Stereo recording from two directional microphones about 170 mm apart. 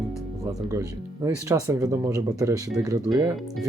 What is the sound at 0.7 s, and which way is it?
Speech, 20° right (ahead or behind).